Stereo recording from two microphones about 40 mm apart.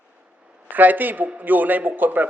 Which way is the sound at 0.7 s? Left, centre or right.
Right.